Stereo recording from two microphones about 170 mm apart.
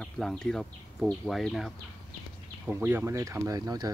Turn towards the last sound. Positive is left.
turn(degrees=-25)  # may be behind; listen again after turning